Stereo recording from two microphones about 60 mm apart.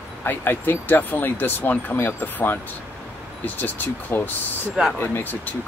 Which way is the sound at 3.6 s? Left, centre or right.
Left.